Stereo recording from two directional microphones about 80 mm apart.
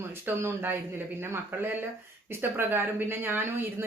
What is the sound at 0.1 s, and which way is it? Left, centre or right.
Speech, right.